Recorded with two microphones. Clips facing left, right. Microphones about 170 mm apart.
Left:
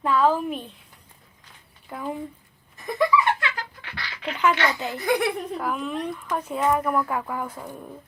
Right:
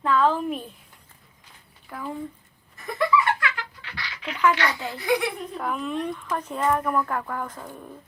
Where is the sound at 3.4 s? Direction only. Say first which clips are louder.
Right 1 dB; 25° left (ahead or behind).